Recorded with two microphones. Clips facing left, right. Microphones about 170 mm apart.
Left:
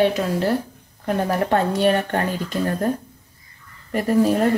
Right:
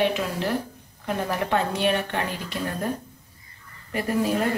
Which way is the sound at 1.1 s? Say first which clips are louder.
Left 5 dB; 45° left (ahead or behind).